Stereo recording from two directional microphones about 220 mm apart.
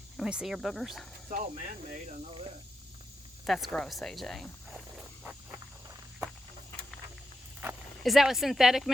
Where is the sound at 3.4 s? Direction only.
Centre (ahead or behind).